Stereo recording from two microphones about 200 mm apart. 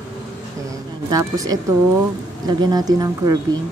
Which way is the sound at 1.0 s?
15° right (ahead or behind).